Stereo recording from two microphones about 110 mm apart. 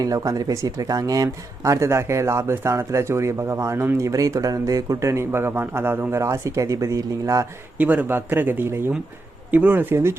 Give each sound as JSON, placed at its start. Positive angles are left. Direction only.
{"t": 0.0, "sound": "speech", "side_deg": -35}
{"t": 7.8, "sound": "speech", "side_deg": -15}